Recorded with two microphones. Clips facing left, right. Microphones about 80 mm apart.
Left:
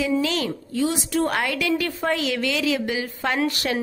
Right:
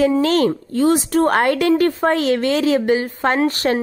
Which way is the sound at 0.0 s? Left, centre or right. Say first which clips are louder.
Right 8 dB; right.